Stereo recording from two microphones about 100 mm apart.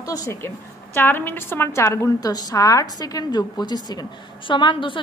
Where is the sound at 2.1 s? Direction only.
40° left (ahead or behind).